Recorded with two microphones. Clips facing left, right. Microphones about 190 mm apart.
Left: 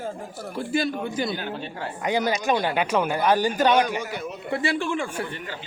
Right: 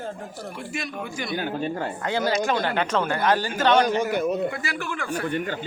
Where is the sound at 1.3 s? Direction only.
45° right (ahead or behind).